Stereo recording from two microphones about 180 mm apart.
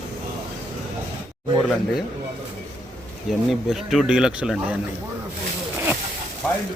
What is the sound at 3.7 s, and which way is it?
Speech, centre (ahead or behind).